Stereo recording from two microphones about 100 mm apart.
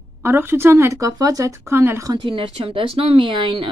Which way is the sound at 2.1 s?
60° right (ahead or behind).